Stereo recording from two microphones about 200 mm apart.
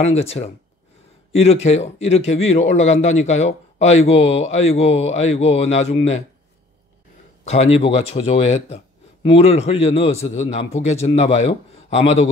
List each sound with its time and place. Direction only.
0.0 s speech: 30° left (ahead or behind)
7.4 s speech: 35° left (ahead or behind)